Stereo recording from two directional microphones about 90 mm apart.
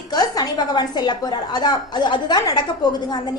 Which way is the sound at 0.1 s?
50° left (ahead or behind).